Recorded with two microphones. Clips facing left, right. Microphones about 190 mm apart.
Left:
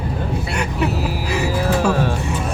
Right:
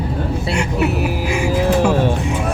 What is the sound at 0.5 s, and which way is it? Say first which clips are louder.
Vehicle: right 4 dB; 80° right.